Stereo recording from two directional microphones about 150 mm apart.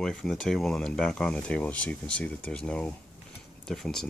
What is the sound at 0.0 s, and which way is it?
Speech, 5° left (ahead or behind).